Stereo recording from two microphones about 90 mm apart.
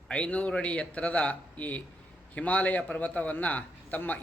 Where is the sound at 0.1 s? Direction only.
15° left (ahead or behind).